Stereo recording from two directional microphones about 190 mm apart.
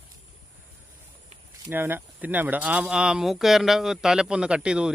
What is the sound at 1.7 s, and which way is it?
Speech, 10° right (ahead or behind).